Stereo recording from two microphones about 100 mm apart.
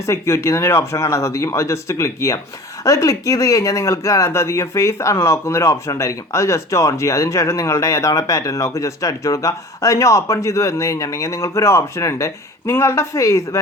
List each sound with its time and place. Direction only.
0.0 s speech: 30° left (ahead or behind)